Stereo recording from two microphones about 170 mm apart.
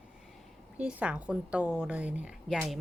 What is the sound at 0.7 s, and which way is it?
A woman's voice, 5° right (ahead or behind).